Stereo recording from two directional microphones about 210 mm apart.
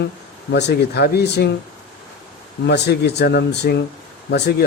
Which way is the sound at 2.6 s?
55° left (ahead or behind).